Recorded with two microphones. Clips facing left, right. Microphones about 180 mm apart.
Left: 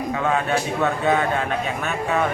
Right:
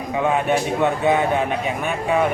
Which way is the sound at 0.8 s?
15° right (ahead or behind).